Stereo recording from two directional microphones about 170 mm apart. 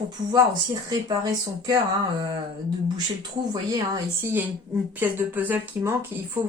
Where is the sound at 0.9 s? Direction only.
25° right (ahead or behind).